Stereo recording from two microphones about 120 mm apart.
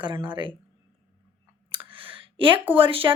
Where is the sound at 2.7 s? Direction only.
45° right (ahead or behind).